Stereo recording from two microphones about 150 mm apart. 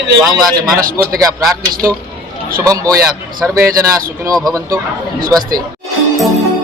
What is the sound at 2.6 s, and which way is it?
Speech, 25° right (ahead or behind).